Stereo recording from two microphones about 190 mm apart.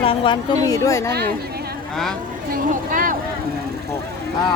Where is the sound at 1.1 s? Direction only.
55° right (ahead or behind).